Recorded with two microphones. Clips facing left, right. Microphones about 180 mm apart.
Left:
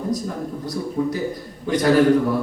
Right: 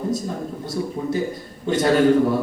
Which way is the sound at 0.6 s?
25° right (ahead or behind).